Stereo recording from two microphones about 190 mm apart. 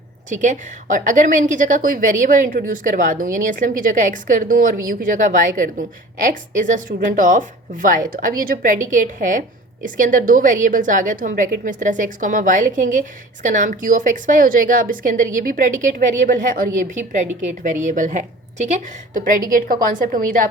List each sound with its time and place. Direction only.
0.3 s a woman's voice: 40° right (ahead or behind)